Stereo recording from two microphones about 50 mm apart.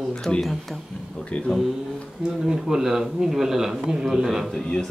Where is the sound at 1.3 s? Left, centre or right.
Left.